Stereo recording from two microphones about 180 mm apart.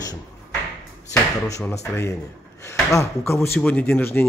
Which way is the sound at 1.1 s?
15° left (ahead or behind).